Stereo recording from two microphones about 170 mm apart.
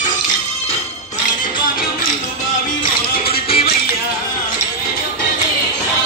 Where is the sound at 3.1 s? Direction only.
60° left (ahead or behind).